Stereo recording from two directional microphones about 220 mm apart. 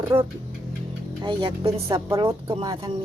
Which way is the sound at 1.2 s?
20° right (ahead or behind).